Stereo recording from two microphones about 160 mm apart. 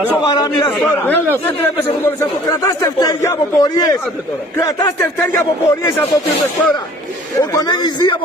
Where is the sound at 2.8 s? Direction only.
20° left (ahead or behind).